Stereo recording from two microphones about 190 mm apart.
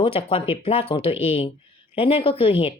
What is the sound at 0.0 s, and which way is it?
Speech, 30° left (ahead or behind).